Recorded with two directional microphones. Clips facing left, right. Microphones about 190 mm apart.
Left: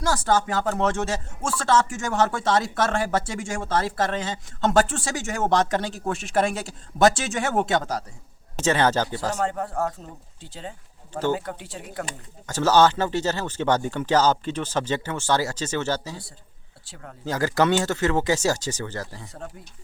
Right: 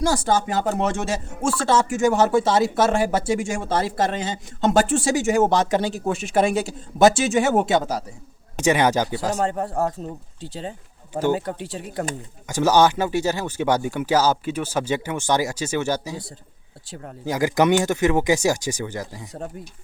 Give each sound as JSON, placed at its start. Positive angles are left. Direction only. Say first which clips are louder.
{"t": 0.0, "sound": "speech", "louder": "right 2 dB", "side_deg": -15}
{"t": 9.4, "sound": "speech", "louder": "right 3 dB", "side_deg": -30}
{"t": 11.1, "sound": "speech", "louder": "right 3 dB", "side_deg": -15}
{"t": 11.3, "sound": "speech", "louder": "right 5 dB", "side_deg": -35}
{"t": 12.5, "sound": "speech", "louder": "right 1 dB", "side_deg": -15}